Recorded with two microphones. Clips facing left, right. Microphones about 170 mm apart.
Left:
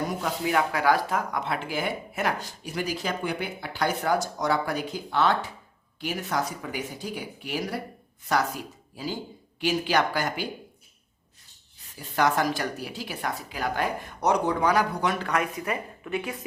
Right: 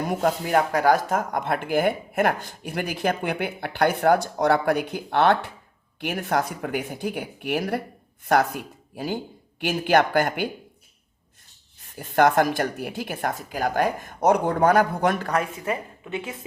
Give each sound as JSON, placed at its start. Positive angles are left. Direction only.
{"t": 0.1, "sound": "speech", "side_deg": -50}
{"t": 11.9, "sound": "speech", "side_deg": -55}
{"t": 15.3, "sound": "a woman's voice", "side_deg": -30}